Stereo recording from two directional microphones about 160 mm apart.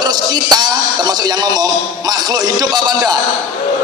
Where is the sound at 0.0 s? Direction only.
25° right (ahead or behind).